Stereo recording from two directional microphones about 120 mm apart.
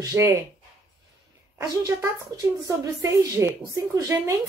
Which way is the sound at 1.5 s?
25° right (ahead or behind).